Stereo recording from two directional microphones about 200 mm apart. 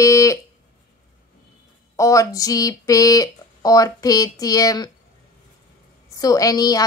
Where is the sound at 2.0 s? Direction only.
15° left (ahead or behind).